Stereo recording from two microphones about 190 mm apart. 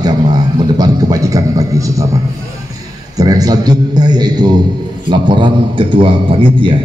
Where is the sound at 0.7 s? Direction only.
20° right (ahead or behind).